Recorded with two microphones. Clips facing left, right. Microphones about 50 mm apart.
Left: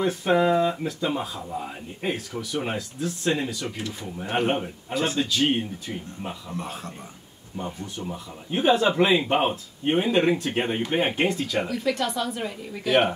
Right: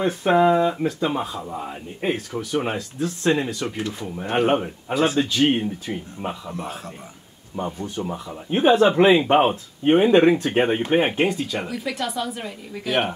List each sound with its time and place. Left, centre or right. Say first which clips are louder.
0.0 s speech: right 4 dB; right
3.0 s speech: right 5 dB; right
4.9 s speech: right 6 dB; centre
5.2 s speech: right 4 dB; right
7.5 s speech: right 5 dB; right
9.4 s speech: right 5 dB; right
11.1 s speech: right 2 dB; centre